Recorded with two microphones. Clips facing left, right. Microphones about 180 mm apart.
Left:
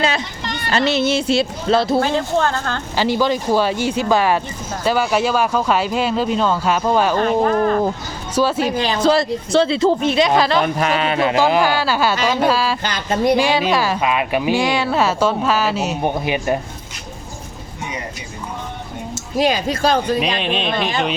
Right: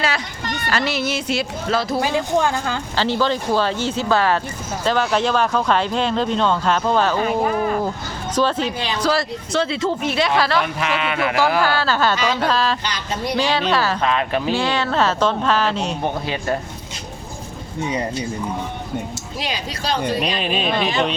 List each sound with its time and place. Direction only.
0.7 s speech: 25° left (ahead or behind)
2.0 s speech: 10° right (ahead or behind)
2.9 s speech: 15° left (ahead or behind)
7.2 s speech: 5° right (ahead or behind)
8.4 s speech: 10° left (ahead or behind)
8.7 s speech: 45° left (ahead or behind)
9.0 s speech: 25° left (ahead or behind)
10.6 s speech: 40° left (ahead or behind)
11.3 s speech: 20° left (ahead or behind)
12.8 s speech: 50° left (ahead or behind)
13.3 s speech: 10° left (ahead or behind)
19.4 s speech: 50° left (ahead or behind)
20.4 s speech: 5° right (ahead or behind)